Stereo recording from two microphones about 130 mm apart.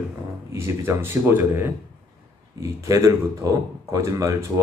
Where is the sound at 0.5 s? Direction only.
20° right (ahead or behind).